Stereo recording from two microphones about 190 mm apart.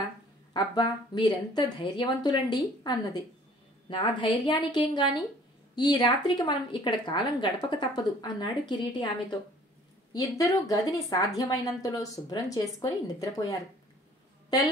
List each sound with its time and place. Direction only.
0.5 s a woman's voice: 20° left (ahead or behind)